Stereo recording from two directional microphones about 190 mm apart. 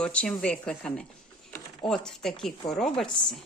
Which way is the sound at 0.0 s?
5° left (ahead or behind).